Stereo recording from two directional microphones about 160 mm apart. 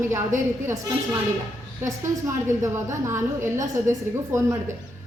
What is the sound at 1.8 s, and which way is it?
A woman's voice, 20° right (ahead or behind).